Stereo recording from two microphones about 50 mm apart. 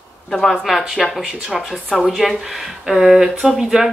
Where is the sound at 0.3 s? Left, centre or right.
Centre.